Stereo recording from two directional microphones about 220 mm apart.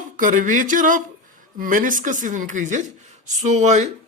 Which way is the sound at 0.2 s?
35° right (ahead or behind).